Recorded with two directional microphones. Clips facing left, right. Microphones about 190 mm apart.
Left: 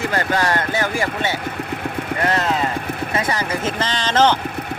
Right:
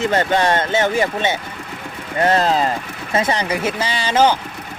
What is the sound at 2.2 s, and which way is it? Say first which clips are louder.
Speech: right 5 dB; 30° right (ahead or behind).